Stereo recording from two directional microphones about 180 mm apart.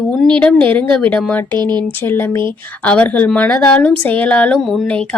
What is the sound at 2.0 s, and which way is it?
Speech, 15° left (ahead or behind).